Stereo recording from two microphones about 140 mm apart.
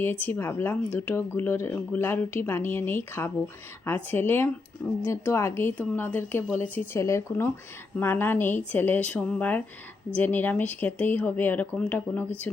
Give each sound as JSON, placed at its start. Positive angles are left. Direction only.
{"t": 0.0, "sound": "speech", "side_deg": 15}